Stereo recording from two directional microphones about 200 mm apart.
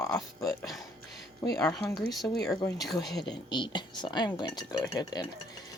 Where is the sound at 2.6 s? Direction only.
20° left (ahead or behind).